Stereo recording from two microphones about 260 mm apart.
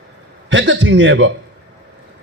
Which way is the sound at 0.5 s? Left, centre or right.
Right.